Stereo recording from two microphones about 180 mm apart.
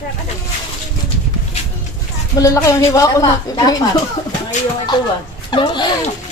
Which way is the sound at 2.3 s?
20° left (ahead or behind).